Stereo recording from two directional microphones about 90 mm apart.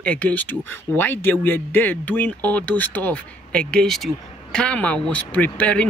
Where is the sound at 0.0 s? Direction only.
15° left (ahead or behind).